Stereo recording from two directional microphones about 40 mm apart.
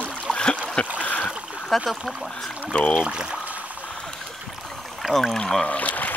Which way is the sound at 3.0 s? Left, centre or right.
Right.